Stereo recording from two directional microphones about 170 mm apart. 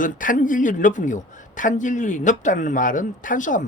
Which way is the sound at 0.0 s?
50° left (ahead or behind).